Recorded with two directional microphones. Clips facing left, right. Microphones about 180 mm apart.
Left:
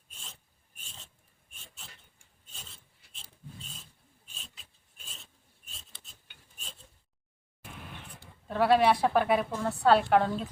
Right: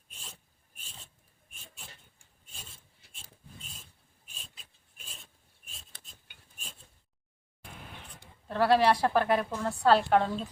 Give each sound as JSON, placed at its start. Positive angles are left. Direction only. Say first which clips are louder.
{"t": 8.4, "sound": "a woman's voice", "louder": "even", "side_deg": 0}